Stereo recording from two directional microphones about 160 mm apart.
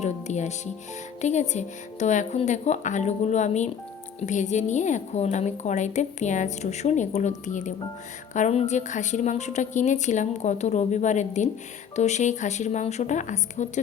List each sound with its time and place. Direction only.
0.0 s music: 45° left (ahead or behind)
1.2 s a woman's voice: 45° left (ahead or behind)